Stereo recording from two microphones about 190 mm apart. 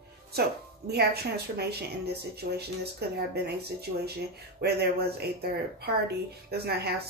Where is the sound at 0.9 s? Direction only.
55° right (ahead or behind).